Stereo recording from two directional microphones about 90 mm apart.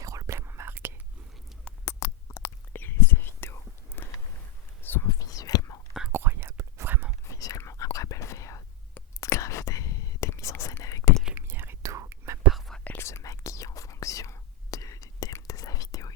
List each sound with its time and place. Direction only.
0.0 s whispering: 40° right (ahead or behind); by 0.9 s 25° right (ahead or behind)
1.8 s whispering: 30° left (ahead or behind)
5.0 s whispering: 40° left (ahead or behind)
6.1 s whispering: 25° right (ahead or behind)
7.3 s whispering: 40° left (ahead or behind)
11.3 s whispering: 25° right (ahead or behind)
12.5 s whispering: centre (ahead or behind)
13.0 s whispering: 30° left (ahead or behind)